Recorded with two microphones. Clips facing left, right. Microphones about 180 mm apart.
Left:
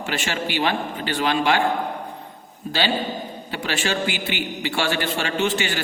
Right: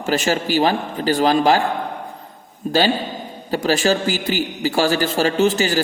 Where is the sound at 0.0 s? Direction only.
40° right (ahead or behind).